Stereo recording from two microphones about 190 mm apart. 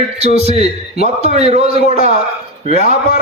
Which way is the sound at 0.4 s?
35° right (ahead or behind).